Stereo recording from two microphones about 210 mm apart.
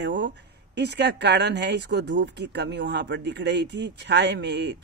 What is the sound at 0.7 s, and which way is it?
A woman's voice, 55° right (ahead or behind).